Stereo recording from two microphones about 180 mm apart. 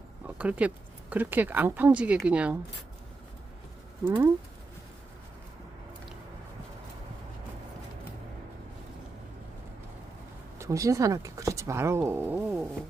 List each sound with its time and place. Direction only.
0.3 s speech: 10° right (ahead or behind)
4.0 s speech: 10° right (ahead or behind)
10.6 s speech: 15° right (ahead or behind)